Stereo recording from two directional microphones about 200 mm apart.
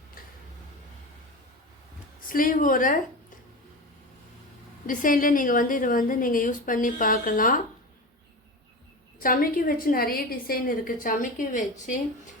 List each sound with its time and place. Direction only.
2.3 s a woman's voice: 45° left (ahead or behind)
4.9 s a woman's voice: 40° left (ahead or behind)
9.1 s a woman's voice: 45° left (ahead or behind)